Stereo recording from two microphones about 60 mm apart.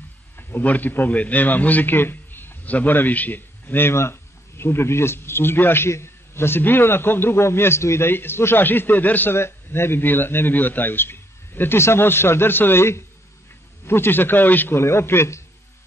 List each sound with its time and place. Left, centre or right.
0.4 s a man's voice: left
8.1 s a man's voice: left
9.3 s a man's voice: left
14.8 s a man's voice: left